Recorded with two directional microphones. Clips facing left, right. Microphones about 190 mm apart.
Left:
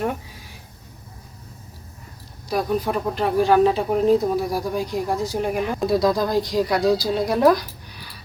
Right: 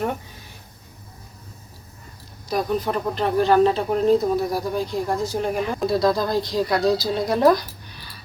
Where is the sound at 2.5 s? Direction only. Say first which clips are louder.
Left 1 dB; 5° left (ahead or behind).